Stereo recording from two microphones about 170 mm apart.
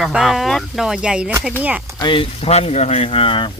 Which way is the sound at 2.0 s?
30° left (ahead or behind).